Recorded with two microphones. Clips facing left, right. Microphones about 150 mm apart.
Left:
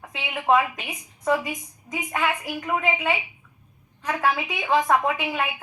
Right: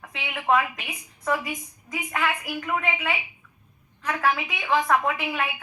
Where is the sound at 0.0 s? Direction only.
25° left (ahead or behind).